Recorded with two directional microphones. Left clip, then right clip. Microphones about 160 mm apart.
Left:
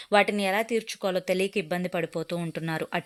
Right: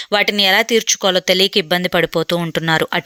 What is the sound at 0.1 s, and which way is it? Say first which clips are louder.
Speech: right 9 dB; 20° right (ahead or behind).